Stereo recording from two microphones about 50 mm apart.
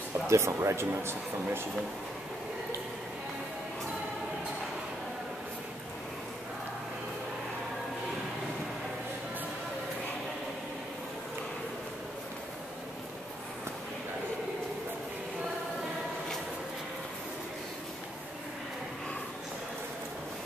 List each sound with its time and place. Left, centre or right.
0.3 s speech: right